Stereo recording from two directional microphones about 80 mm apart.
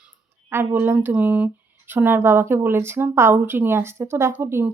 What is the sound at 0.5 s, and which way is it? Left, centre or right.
Speech, right.